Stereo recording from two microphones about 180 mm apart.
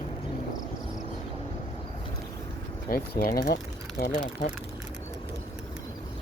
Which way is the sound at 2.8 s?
55° left (ahead or behind).